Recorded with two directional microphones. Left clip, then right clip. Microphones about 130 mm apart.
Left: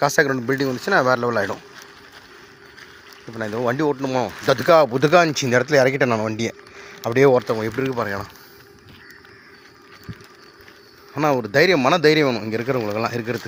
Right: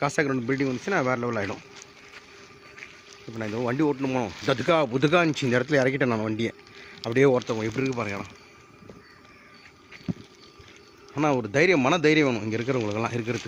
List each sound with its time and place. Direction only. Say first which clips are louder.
0.0 s speech: left 7 dB; 20° left (ahead or behind)
3.3 s speech: left 5 dB; 5° left (ahead or behind)
4.2 s speech: left 7 dB; 15° left (ahead or behind)
5.1 s speech: left 7 dB; 5° right (ahead or behind)
6.3 s speech: left 3 dB; 5° right (ahead or behind)
7.2 s speech: left 6 dB; 10° left (ahead or behind)
11.1 s speech: left 5 dB; 5° right (ahead or behind)
11.4 s speech: left 5 dB; 10° left (ahead or behind)